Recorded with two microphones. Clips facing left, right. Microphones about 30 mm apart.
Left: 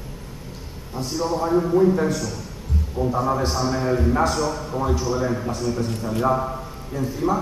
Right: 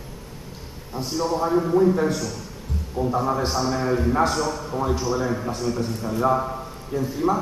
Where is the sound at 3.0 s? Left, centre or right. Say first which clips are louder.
Left 1 dB; centre.